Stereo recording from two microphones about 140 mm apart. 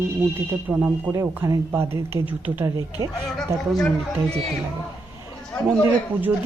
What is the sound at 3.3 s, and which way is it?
Speech, centre (ahead or behind).